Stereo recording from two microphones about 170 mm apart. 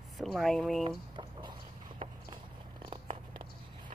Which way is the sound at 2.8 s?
30° right (ahead or behind).